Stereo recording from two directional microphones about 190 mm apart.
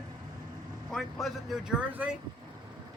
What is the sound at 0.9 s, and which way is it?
Speech, centre (ahead or behind).